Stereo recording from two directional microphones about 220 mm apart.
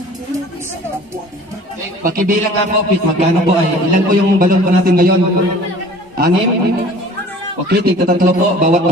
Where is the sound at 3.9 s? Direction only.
40° right (ahead or behind).